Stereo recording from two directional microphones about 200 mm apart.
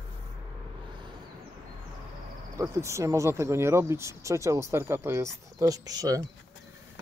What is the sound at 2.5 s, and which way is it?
Speech, 15° right (ahead or behind).